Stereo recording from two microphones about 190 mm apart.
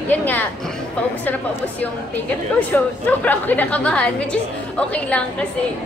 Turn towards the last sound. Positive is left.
turn(degrees=5)  # may be behind; listen again after turning